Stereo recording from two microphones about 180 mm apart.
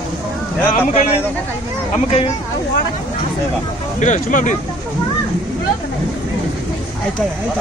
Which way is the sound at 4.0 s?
45° left (ahead or behind).